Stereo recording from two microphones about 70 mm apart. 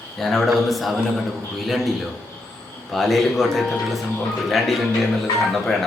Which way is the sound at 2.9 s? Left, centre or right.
Centre.